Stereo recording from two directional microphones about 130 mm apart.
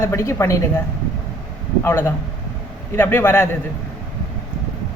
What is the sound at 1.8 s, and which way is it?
A woman's voice, 15° left (ahead or behind).